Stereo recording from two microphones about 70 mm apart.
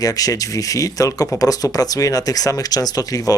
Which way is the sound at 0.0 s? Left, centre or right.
Left.